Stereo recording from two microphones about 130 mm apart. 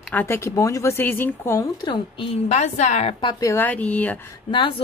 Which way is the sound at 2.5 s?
60° left (ahead or behind).